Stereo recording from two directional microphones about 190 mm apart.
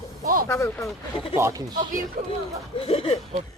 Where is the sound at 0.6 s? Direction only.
10° left (ahead or behind).